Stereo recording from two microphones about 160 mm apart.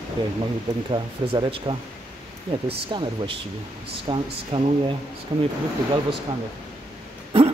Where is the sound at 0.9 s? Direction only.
30° right (ahead or behind).